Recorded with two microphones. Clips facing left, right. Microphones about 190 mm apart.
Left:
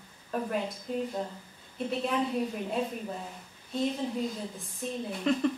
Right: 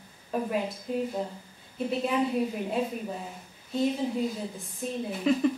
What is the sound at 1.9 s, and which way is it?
A woman's voice, 5° right (ahead or behind).